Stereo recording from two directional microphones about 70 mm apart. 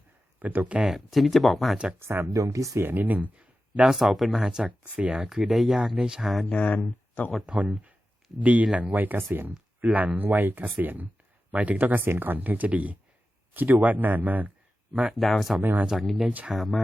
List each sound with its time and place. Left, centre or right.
0.3 s speech: right
0.9 s speech: centre
2.0 s speech: right
2.3 s speech: right
2.8 s speech: right
3.9 s speech: centre
6.5 s speech: centre
7.4 s speech: centre
8.9 s speech: right
15.1 s speech: centre
15.6 s speech: right
15.9 s speech: centre